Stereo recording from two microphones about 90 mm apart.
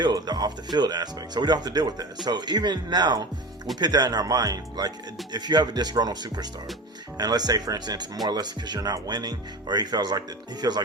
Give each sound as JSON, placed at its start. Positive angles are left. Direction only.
{"t": 0.0, "sound": "speech", "side_deg": -50}